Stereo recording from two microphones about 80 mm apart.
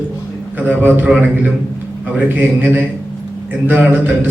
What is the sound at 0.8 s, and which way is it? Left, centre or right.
A man's voice, right.